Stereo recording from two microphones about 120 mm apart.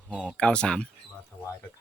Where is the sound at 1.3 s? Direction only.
20° left (ahead or behind).